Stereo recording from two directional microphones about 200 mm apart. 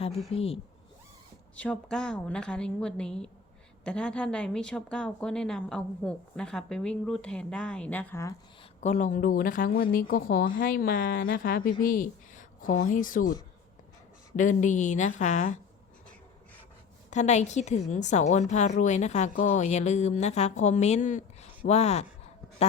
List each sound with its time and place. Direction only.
0.3 s speech: 30° left (ahead or behind)
1.5 s a woman's voice: 5° left (ahead or behind)
8.8 s a woman's voice: 40° left (ahead or behind)
14.3 s a woman's voice: 40° left (ahead or behind)
17.1 s a woman's voice: 35° left (ahead or behind)